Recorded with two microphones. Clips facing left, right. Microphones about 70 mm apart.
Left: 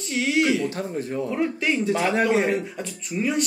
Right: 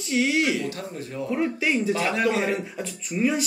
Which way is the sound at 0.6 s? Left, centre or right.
Left.